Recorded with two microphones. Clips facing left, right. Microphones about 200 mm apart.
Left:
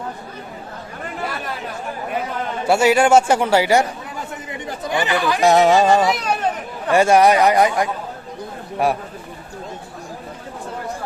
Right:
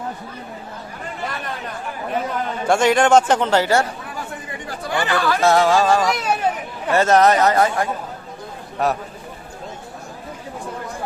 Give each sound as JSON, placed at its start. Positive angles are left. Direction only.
{"t": 2.6, "sound": "speech", "side_deg": 10}
{"t": 6.0, "sound": "a sound", "side_deg": 0}
{"t": 6.9, "sound": "speech", "side_deg": 10}